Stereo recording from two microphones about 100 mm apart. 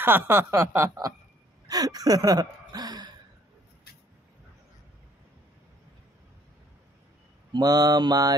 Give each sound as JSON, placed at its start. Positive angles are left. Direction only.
{"t": 0.0, "sound": "speech", "side_deg": -20}
{"t": 1.7, "sound": "gasp", "side_deg": -40}
{"t": 7.5, "sound": "mantra", "side_deg": -40}